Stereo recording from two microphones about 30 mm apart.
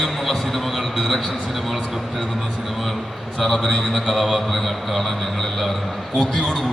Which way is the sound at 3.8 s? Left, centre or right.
Centre.